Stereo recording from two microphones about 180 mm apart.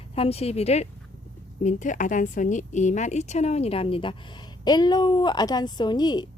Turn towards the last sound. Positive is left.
turn(degrees=25)  # may be behind; listen again after turning